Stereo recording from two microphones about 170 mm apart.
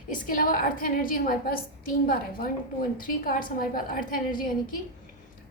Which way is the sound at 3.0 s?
55° left (ahead or behind).